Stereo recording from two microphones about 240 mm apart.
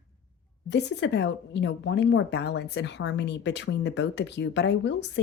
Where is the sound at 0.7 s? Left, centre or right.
Left.